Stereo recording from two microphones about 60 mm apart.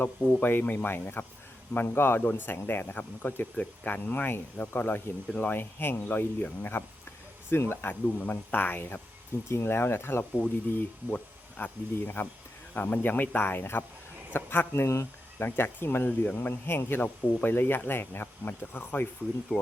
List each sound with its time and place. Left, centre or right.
0.2 s speech: right
0.6 s speech: left
15.4 s speech: left
16.0 s speech: left